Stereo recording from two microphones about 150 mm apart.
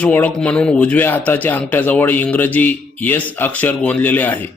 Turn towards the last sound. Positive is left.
turn(degrees=10)  # may be behind; listen again after turning